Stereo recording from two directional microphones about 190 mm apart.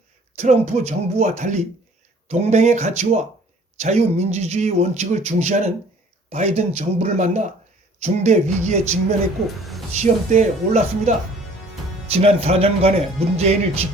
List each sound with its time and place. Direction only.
0.3 s speech: 40° right (ahead or behind)
9.9 s speech: 40° right (ahead or behind)
12.1 s speech: 30° right (ahead or behind)